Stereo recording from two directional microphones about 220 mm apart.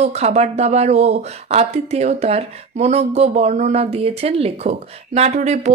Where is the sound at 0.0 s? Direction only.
30° right (ahead or behind).